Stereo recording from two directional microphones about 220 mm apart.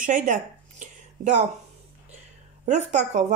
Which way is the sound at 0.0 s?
35° right (ahead or behind).